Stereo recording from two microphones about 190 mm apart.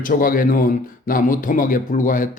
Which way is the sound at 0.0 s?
45° left (ahead or behind).